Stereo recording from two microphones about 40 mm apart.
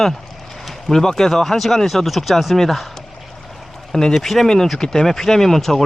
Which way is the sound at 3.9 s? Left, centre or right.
Centre.